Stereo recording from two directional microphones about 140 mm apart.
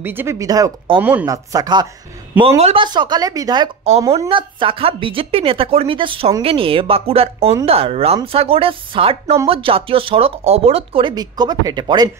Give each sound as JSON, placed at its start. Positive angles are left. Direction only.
{"t": 0.0, "sound": "speech", "side_deg": -15}
{"t": 0.9, "sound": "speech", "side_deg": -35}
{"t": 1.2, "sound": "speech", "side_deg": -25}
{"t": 2.3, "sound": "speech", "side_deg": -40}